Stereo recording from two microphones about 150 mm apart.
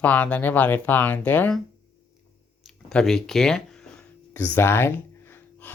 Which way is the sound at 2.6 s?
5° left (ahead or behind).